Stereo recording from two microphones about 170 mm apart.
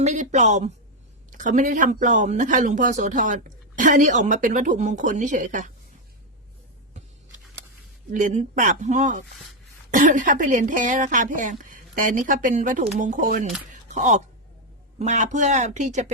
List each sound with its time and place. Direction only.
0.0 s speech: 45° right (ahead or behind)
8.1 s speech: 45° right (ahead or behind)